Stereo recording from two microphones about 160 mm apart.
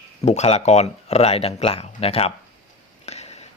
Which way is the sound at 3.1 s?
40° left (ahead or behind).